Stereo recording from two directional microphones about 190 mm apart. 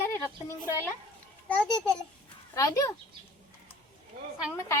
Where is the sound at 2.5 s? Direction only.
15° left (ahead or behind).